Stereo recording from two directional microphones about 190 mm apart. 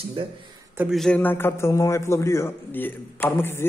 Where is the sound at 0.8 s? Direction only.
Centre (ahead or behind).